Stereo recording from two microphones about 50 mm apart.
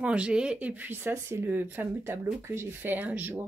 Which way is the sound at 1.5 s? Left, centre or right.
Right.